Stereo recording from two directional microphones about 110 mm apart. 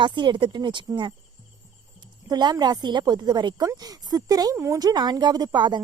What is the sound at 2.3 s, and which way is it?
A woman's voice, 40° right (ahead or behind).